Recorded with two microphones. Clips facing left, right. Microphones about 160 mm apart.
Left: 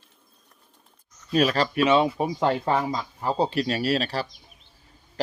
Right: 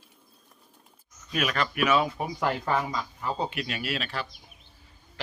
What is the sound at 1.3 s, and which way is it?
A man's voice, 30° left (ahead or behind).